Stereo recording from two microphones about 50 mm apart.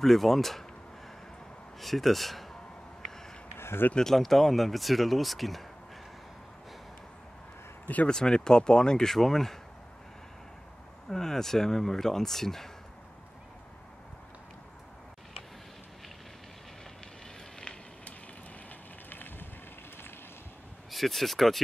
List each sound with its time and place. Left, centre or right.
0.0 s speech: centre
1.8 s speech: centre
3.5 s a sound: left
3.9 s speech: centre
8.1 s speech: centre
11.1 s speech: centre
18.7 s vehicle: left
20.9 s speech: centre